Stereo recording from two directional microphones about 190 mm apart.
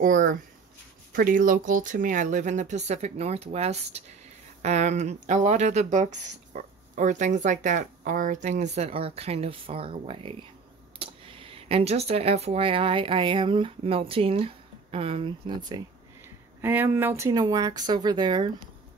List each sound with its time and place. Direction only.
0.0 s speech: 45° right (ahead or behind); by 15.8 s 25° right (ahead or behind)
16.6 s speech: 10° right (ahead or behind)